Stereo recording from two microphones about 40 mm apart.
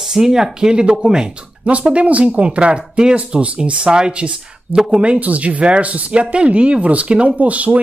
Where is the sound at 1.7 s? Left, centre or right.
Right.